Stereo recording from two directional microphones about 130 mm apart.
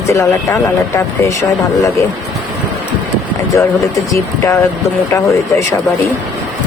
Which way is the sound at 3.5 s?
20° left (ahead or behind).